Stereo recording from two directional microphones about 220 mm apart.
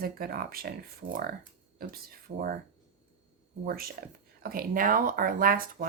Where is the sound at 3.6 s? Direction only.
40° right (ahead or behind).